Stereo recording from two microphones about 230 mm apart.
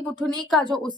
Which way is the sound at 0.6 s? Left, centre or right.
Left.